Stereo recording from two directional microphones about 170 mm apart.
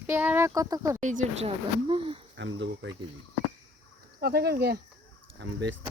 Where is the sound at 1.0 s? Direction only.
45° right (ahead or behind).